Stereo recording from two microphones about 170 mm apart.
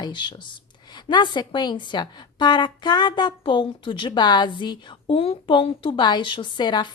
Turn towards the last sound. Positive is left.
turn(degrees=25)  # may be behind; listen again after turning